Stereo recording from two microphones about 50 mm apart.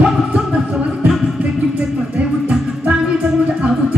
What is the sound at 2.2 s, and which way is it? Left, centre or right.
Music, right.